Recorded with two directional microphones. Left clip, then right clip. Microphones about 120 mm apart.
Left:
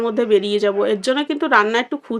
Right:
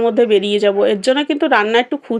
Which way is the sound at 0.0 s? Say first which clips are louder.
Right 4 dB; 30° right (ahead or behind).